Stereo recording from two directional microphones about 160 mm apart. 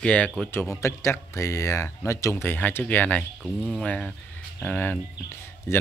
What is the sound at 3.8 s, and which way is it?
Speech, 5° left (ahead or behind).